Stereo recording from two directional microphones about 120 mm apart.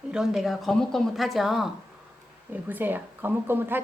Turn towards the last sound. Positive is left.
turn(degrees=-15)  # may be behind; listen again after turning